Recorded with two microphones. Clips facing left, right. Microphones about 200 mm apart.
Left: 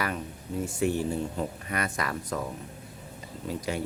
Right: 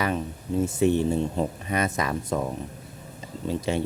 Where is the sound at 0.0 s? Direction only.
25° right (ahead or behind).